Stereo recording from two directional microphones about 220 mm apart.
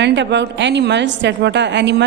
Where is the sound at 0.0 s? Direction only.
50° right (ahead or behind).